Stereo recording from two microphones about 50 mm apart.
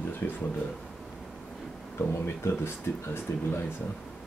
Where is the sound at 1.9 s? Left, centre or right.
Left.